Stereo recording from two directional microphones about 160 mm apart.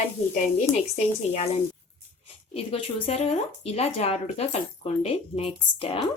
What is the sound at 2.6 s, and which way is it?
Speech, 40° left (ahead or behind).